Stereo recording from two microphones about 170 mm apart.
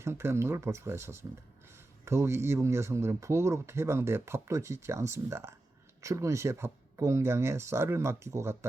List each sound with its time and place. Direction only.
0.0 s speech: 15° right (ahead or behind)